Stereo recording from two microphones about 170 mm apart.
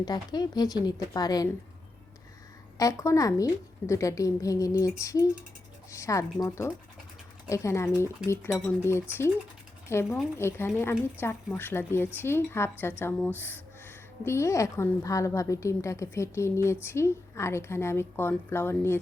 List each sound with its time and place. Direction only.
0.0 s a woman's voice: 25° left (ahead or behind)
2.7 s a woman's voice: 20° left (ahead or behind)